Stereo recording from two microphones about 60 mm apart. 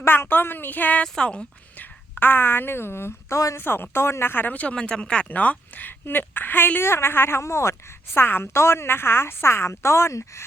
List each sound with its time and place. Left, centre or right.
0.0 s speech: left
1.0 s speech: centre
1.8 s a woman's voice: left
3.6 s speech: left